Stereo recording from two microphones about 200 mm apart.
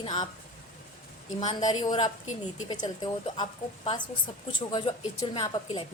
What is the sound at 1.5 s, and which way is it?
A woman's voice, 20° left (ahead or behind).